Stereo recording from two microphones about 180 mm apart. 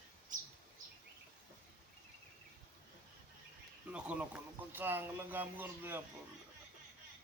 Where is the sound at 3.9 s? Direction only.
5° right (ahead or behind).